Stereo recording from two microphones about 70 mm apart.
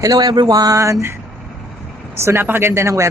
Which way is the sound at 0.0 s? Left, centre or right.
Right.